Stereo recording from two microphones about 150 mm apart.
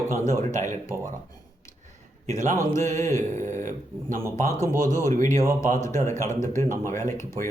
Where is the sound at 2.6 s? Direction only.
20° left (ahead or behind).